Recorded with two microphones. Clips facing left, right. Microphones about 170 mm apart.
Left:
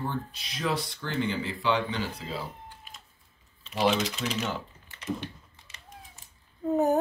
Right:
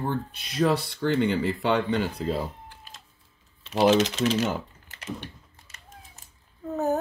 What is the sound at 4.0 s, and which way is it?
Speech, 85° right.